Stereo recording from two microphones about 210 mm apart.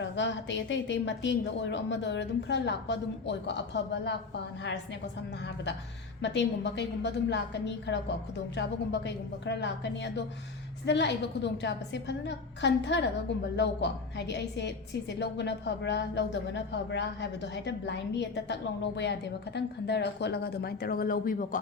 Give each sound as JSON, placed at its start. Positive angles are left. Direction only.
{"t": 0.0, "sound": "a woman's voice", "side_deg": 60}
{"t": 6.2, "sound": "a woman's voice", "side_deg": 55}